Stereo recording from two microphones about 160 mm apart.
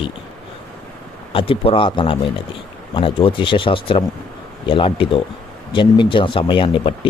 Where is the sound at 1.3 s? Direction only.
35° left (ahead or behind).